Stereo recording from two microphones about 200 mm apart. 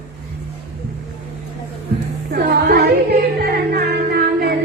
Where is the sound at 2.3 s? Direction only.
55° right (ahead or behind).